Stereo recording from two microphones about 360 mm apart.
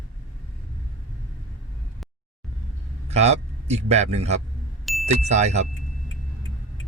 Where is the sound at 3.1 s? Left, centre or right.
Centre.